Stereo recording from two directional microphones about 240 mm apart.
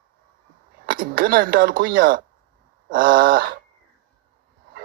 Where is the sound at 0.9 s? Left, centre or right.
Right.